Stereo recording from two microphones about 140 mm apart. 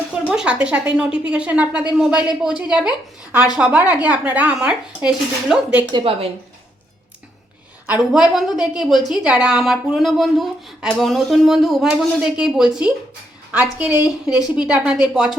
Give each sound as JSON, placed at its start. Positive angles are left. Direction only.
{"t": 0.3, "sound": "speech", "side_deg": -10}
{"t": 5.9, "sound": "a woman's voice", "side_deg": -40}
{"t": 7.9, "sound": "speech", "side_deg": -10}